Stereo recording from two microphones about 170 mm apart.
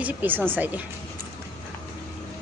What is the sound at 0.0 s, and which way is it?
Speech, 10° right (ahead or behind).